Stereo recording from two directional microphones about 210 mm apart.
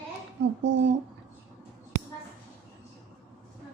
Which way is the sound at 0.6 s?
60° right (ahead or behind).